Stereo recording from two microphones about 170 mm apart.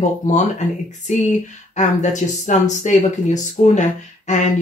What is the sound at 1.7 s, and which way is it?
Speech, 45° left (ahead or behind).